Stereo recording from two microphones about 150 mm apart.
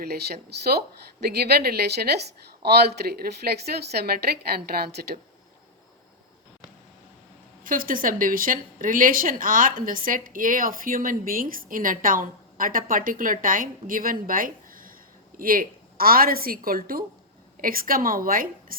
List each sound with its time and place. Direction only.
1.2 s a woman's voice: 90° right
7.6 s speech: 70° right (ahead or behind)